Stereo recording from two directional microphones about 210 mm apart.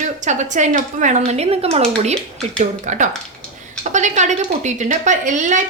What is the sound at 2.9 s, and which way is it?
Speech, 35° right (ahead or behind).